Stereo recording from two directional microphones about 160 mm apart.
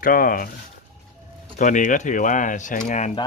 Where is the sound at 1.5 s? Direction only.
50° left (ahead or behind).